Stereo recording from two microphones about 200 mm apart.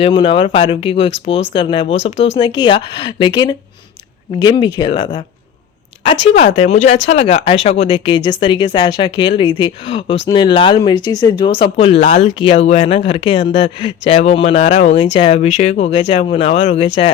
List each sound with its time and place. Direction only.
0.0 s speech: 25° left (ahead or behind)
6.1 s speech: 30° left (ahead or behind)